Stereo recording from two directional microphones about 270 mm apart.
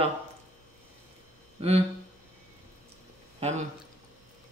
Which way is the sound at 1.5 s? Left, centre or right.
Right.